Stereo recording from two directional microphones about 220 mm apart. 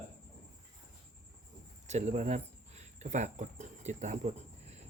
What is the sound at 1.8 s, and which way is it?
Speech, 30° right (ahead or behind).